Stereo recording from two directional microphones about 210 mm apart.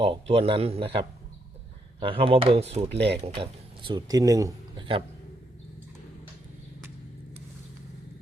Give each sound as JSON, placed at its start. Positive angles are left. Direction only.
{"t": 0.0, "sound": "a man's voice", "side_deg": -25}